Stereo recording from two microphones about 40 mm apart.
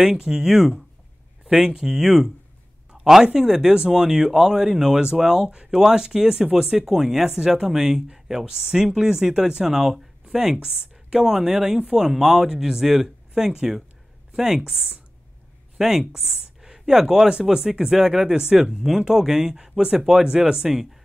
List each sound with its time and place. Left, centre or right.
0.0 s speech: centre
3.3 s speech: centre
5.5 s speech: right
5.8 s speech: centre
16.2 s a sound: centre
17.3 s speech: right
17.6 s speech: centre